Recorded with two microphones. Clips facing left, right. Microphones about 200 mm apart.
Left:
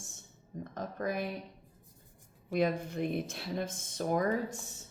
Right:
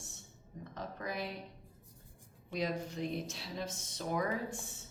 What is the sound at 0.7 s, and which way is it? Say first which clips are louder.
Speech: left 6 dB; 50° left (ahead or behind).